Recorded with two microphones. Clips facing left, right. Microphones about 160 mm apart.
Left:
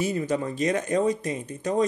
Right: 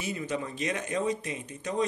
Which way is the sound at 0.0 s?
40° left (ahead or behind).